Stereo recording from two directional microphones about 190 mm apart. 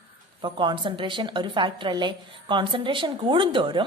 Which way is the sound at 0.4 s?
25° right (ahead or behind).